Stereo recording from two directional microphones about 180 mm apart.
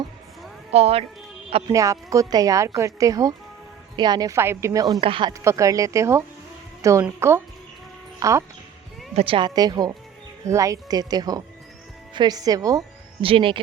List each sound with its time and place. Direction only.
0.7 s speech: 35° right (ahead or behind)
1.7 s speech: 15° right (ahead or behind)
5.3 s speech: 15° right (ahead or behind)
9.1 s speech: 30° right (ahead or behind)
13.2 s speech: 30° right (ahead or behind)